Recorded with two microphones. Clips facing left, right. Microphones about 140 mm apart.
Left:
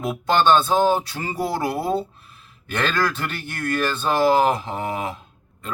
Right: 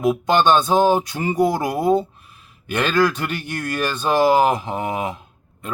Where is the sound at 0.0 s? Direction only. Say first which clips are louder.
Right 3 dB; 15° right (ahead or behind).